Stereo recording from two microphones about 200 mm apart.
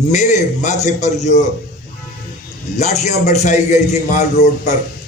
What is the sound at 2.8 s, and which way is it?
A man's voice, 35° left (ahead or behind).